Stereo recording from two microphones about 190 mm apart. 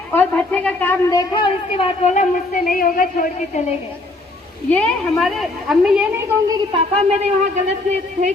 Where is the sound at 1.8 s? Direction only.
35° left (ahead or behind).